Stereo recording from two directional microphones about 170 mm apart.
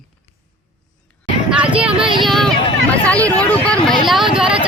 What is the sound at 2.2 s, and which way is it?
Speech, centre (ahead or behind).